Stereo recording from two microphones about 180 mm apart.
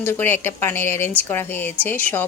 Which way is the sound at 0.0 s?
10° left (ahead or behind).